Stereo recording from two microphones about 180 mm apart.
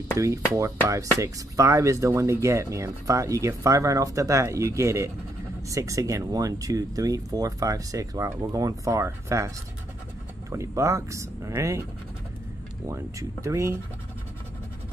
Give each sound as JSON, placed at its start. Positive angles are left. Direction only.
{"t": 0.2, "sound": "speech", "side_deg": -15}
{"t": 10.5, "sound": "speech", "side_deg": -15}
{"t": 12.8, "sound": "speech", "side_deg": -15}